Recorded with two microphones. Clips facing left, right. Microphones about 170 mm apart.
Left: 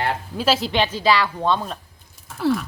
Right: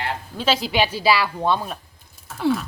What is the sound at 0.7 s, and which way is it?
A woman's voice, 10° right (ahead or behind).